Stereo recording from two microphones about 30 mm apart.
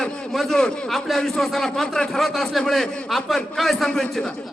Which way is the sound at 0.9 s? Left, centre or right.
Centre.